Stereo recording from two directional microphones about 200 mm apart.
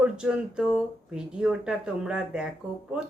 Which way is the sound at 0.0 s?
5° right (ahead or behind).